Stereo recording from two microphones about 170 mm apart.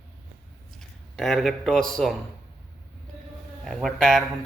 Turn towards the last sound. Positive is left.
turn(degrees=0)  # may be behind; listen again after turning